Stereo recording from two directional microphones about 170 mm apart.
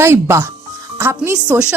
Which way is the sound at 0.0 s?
15° right (ahead or behind).